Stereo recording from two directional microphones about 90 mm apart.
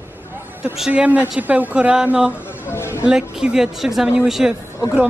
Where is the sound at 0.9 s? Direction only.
15° right (ahead or behind).